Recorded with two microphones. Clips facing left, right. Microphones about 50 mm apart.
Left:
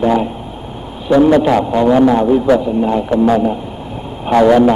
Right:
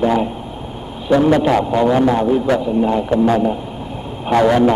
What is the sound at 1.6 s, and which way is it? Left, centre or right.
A man's voice, centre.